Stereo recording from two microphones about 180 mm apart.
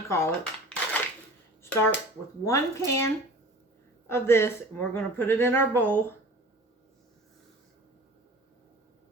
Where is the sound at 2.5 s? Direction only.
15° left (ahead or behind).